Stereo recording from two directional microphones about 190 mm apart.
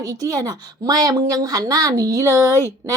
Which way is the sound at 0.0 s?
20° right (ahead or behind).